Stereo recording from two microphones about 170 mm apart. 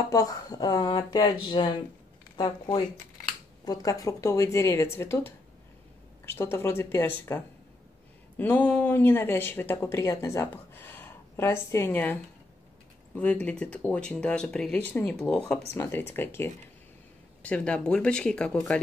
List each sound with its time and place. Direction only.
0.1 s speech: 20° left (ahead or behind)